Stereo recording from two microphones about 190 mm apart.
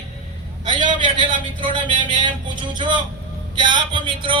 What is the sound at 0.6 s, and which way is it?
A man's voice, 25° right (ahead or behind).